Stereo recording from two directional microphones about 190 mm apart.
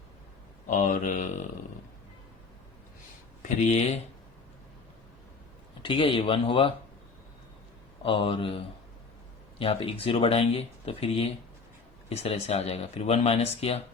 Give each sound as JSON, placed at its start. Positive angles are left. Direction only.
{"t": 0.7, "sound": "speech", "side_deg": 45}
{"t": 3.7, "sound": "speech", "side_deg": 35}
{"t": 5.8, "sound": "speech", "side_deg": 30}
{"t": 8.0, "sound": "speech", "side_deg": 25}